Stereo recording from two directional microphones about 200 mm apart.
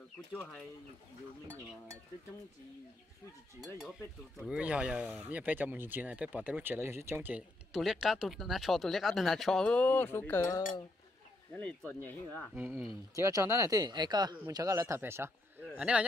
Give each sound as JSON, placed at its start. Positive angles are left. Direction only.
{"t": 3.6, "sound": "speech", "side_deg": 0}
{"t": 12.5, "sound": "speech", "side_deg": -10}